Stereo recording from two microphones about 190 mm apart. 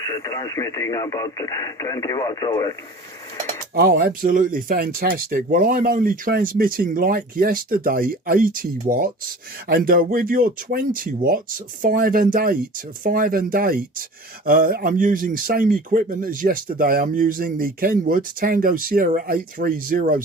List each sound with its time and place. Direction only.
0.0 s speech: 20° left (ahead or behind)
3.8 s speech: 50° right (ahead or behind)